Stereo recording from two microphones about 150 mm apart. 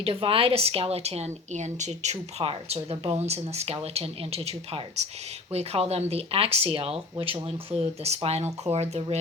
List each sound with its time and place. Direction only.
0.0 s a woman's voice: 35° right (ahead or behind)